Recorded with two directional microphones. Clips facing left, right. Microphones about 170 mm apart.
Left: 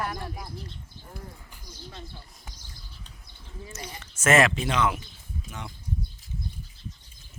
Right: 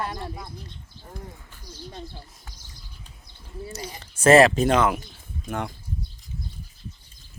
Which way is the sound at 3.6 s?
35° right (ahead or behind).